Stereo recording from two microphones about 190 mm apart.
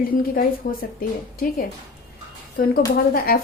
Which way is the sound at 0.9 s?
50° left (ahead or behind).